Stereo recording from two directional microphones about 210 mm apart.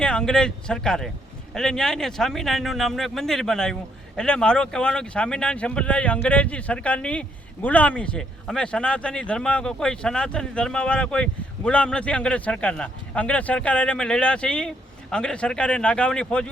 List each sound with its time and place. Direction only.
0.0 s a man's voice: 5° left (ahead or behind)